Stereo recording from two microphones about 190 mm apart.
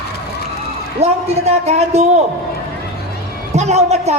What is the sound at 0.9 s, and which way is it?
A woman's voice, 35° right (ahead or behind).